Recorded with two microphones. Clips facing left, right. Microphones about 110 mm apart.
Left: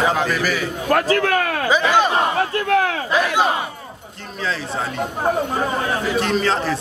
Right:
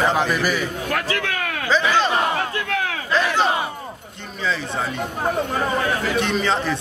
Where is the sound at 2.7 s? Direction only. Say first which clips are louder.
Left 10 dB; 40° left (ahead or behind).